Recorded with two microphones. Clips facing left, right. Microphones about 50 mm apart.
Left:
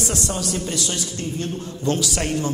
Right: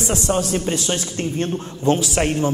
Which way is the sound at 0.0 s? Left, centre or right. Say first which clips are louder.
Right 5 dB; right.